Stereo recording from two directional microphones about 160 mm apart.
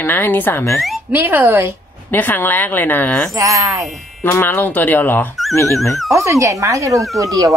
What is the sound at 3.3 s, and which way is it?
Speech, 20° right (ahead or behind).